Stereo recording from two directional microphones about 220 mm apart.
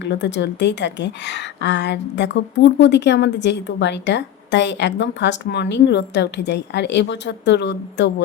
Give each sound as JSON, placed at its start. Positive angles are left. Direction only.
{"t": 0.0, "sound": "a woman's voice", "side_deg": 55}